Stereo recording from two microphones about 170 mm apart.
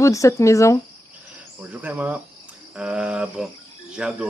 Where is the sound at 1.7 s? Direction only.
10° right (ahead or behind).